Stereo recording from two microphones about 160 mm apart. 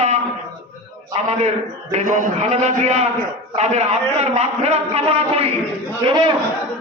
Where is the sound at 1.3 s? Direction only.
40° right (ahead or behind).